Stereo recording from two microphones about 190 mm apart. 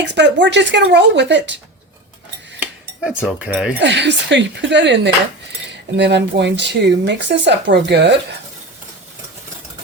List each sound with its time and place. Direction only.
0.0 s speech: 65° right (ahead or behind)
3.2 s speech: 5° right (ahead or behind)
3.8 s speech: 65° right (ahead or behind)